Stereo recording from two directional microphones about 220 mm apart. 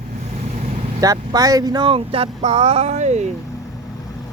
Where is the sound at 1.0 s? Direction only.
15° right (ahead or behind).